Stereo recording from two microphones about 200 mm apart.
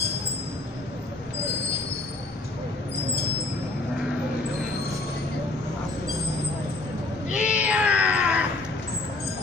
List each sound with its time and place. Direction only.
7.3 s cat: 5° right (ahead or behind)